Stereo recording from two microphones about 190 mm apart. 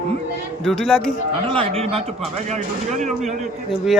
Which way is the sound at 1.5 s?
30° right (ahead or behind).